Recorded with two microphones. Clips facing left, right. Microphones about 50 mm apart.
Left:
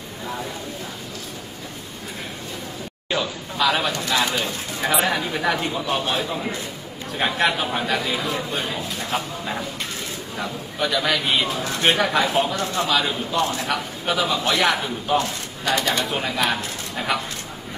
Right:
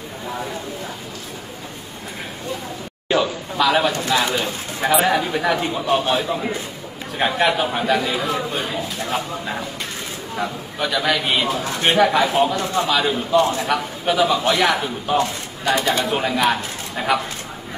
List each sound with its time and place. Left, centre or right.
3.1 s a man's voice: centre
12.5 s a man's voice: right
12.8 s speech: centre
13.4 s a man's voice: right
14.0 s a man's voice: centre
15.6 s speech: centre